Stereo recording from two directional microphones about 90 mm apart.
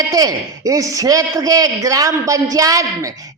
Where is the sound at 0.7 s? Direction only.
40° right (ahead or behind).